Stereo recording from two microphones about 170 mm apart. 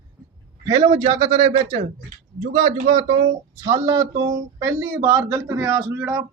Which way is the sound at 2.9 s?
25° right (ahead or behind).